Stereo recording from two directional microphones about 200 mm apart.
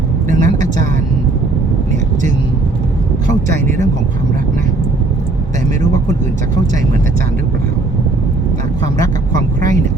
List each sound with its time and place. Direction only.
0.3 s a woman's voice: 40° right (ahead or behind)